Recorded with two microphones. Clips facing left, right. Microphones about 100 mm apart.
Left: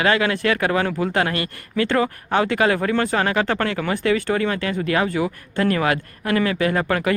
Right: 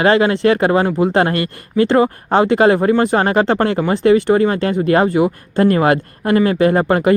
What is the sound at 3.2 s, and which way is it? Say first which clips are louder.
Speech: right 6 dB; 35° right (ahead or behind).